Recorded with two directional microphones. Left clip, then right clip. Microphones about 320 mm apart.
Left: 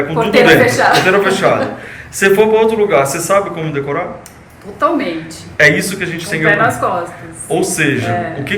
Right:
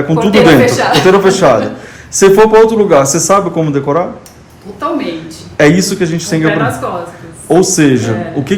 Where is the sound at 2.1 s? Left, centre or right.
Centre.